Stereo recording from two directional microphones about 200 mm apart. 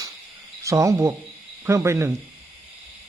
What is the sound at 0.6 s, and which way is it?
A man's voice, 15° right (ahead or behind).